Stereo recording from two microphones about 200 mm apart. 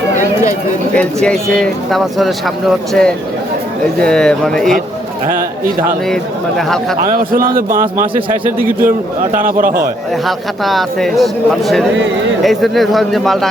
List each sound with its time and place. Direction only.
0.9 s speech: 5° left (ahead or behind)
6.6 s speech: centre (ahead or behind)
7.0 s a man's voice: 45° right (ahead or behind)
10.2 s speech: centre (ahead or behind)